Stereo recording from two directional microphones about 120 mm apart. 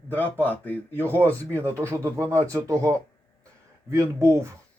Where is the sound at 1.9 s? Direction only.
25° right (ahead or behind).